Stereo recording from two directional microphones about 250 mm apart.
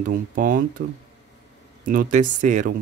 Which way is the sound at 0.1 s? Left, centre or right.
Right.